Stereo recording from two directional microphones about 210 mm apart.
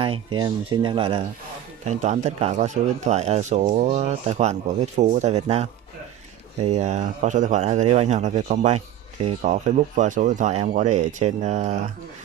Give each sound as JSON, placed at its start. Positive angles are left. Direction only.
{"t": 0.0, "sound": "speech", "side_deg": -25}